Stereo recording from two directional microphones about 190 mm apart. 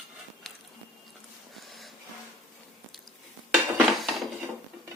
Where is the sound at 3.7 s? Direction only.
Centre (ahead or behind).